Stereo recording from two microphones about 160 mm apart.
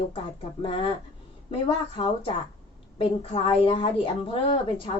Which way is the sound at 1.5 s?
35° left (ahead or behind).